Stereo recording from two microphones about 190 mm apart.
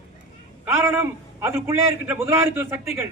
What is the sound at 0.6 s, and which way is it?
A man's voice, 10° right (ahead or behind).